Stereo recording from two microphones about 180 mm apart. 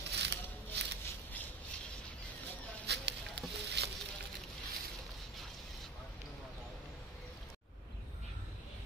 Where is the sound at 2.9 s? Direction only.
70° right (ahead or behind).